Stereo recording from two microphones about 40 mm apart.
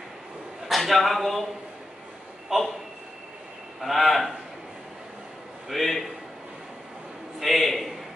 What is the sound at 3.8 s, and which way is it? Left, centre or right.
Speech, centre.